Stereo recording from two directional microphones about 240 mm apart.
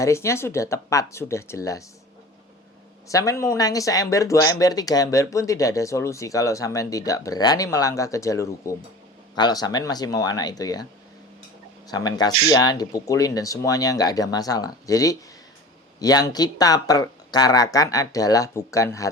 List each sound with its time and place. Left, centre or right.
0.0 s speech: centre
3.1 s speech: centre
11.9 s speech: centre